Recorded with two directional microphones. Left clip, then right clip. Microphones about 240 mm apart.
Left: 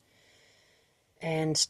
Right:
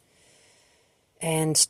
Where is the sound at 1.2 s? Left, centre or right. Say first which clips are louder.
Right 4 dB; right.